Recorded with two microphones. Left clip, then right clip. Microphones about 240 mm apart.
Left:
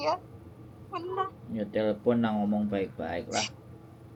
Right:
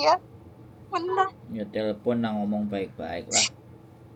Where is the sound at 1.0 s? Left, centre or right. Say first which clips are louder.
Right 8 dB; right.